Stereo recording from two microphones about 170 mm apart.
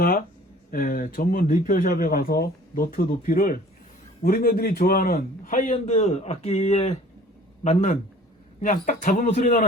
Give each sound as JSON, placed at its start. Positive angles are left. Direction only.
{"t": 0.0, "sound": "speech", "side_deg": 60}
{"t": 5.1, "sound": "speech", "side_deg": 50}